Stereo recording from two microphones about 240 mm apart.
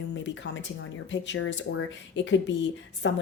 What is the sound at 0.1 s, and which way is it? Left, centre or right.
Speech, left.